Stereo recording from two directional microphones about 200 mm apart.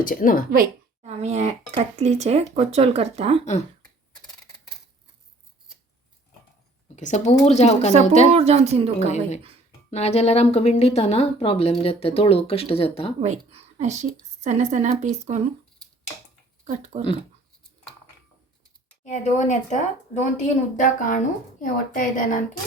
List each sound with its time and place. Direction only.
0.0 s speech: 45° left (ahead or behind)
0.5 s a sound: 45° right (ahead or behind)
1.1 s speech: 35° right (ahead or behind)
6.9 s a woman's voice: 35° left (ahead or behind)
8.3 s speech: 30° right (ahead or behind)
9.0 s a woman's voice: 35° left (ahead or behind)
13.1 s speech: 35° right (ahead or behind)
16.9 s speech: 35° right (ahead or behind)
19.0 s a woman's voice: 35° left (ahead or behind)